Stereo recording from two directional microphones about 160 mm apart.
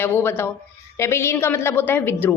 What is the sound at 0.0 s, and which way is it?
A woman's voice, 15° left (ahead or behind).